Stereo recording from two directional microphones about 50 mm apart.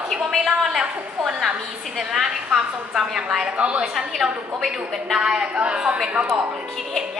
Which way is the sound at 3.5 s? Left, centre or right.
Right.